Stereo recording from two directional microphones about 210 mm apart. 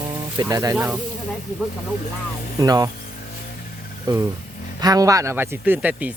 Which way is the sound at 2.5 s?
15° right (ahead or behind).